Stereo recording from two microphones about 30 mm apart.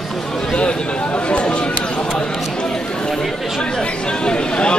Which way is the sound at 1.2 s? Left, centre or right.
Left.